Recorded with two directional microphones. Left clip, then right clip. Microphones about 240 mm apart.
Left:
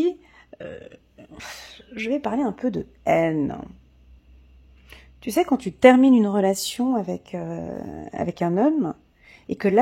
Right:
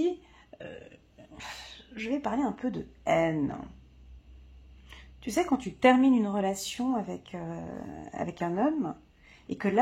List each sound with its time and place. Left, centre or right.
0.0 s burping: left
4.8 s a woman's voice: left